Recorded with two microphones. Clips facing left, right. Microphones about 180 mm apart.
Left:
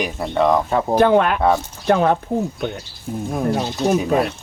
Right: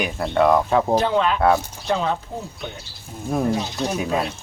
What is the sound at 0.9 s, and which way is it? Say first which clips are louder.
Speech: left 5 dB; 55° left (ahead or behind).